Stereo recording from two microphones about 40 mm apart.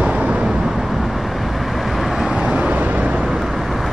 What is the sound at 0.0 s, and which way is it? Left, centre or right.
Vehicle, right.